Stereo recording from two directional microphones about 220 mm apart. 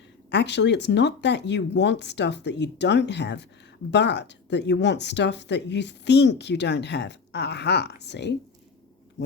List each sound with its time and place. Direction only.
0.3 s speech: 50° left (ahead or behind)